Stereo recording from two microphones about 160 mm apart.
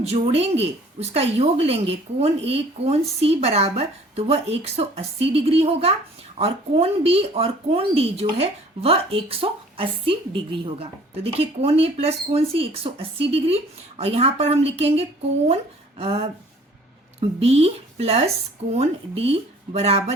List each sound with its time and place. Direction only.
0.0 s speech: 40° right (ahead or behind)